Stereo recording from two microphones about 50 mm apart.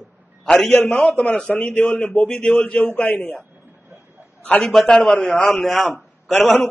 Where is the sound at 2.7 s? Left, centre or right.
Left.